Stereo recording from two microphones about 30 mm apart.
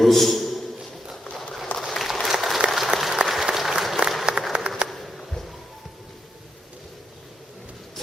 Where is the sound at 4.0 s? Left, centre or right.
Left.